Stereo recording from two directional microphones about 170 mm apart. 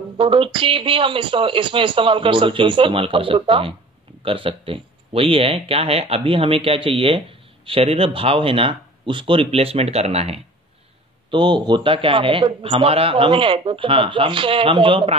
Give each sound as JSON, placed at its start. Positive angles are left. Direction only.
{"t": 0.2, "sound": "speech", "side_deg": -30}